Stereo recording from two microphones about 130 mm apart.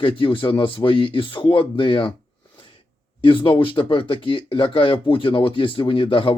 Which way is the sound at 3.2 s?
45° left (ahead or behind).